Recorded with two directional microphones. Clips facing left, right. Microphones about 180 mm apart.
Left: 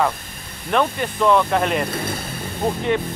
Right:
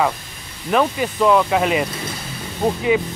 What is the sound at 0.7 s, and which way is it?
Speech, 5° right (ahead or behind).